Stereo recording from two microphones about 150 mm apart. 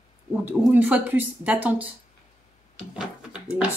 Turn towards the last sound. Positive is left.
turn(degrees=-5)  # may be behind; listen again after turning